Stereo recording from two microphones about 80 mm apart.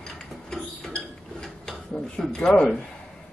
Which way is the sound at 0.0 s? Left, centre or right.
Centre.